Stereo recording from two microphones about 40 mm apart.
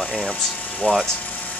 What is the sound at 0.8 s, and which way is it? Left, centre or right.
Speech, left.